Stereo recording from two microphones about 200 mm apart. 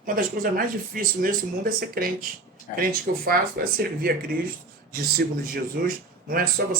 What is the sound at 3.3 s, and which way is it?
Speech, 50° right (ahead or behind).